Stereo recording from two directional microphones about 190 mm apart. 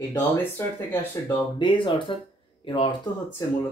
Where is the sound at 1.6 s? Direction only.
25° left (ahead or behind).